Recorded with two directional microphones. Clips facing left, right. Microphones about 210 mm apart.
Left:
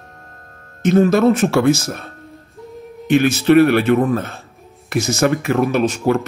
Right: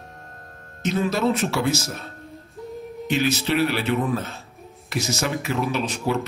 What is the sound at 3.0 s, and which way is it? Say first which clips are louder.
Speech: left 9 dB; 50° left (ahead or behind).